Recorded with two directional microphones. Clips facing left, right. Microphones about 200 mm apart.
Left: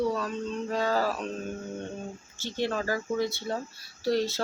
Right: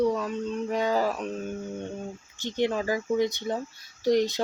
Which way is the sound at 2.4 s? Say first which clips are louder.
Right 3 dB; 15° right (ahead or behind).